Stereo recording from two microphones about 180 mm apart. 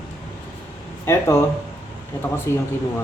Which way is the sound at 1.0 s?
15° left (ahead or behind).